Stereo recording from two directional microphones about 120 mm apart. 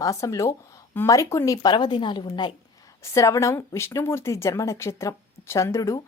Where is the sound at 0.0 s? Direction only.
25° left (ahead or behind).